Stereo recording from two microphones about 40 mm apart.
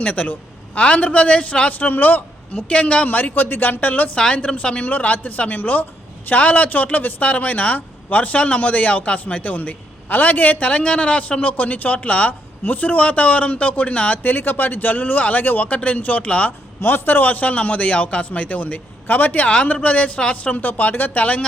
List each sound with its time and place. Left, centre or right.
0.0 s a man's voice: left
1.7 s speech: left
2.6 s a woman's voice: left
3.1 s speech: left
4.2 s a woman's voice: left
4.9 s a man's voice: left
14.2 s speech: left
16.8 s a man's voice: left
19.5 s a man's voice: left